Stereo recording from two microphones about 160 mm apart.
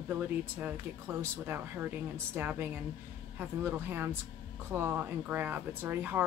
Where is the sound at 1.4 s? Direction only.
15° right (ahead or behind).